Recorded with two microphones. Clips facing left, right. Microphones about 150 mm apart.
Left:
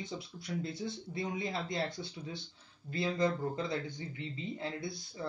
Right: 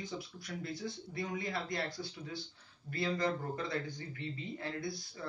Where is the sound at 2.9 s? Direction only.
20° left (ahead or behind).